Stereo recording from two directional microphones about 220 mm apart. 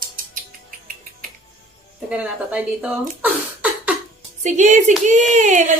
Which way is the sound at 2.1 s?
5° right (ahead or behind).